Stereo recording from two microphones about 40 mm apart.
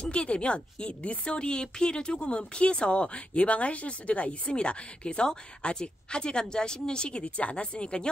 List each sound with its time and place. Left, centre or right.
0.1 s a woman's voice: left
7.2 s speech: left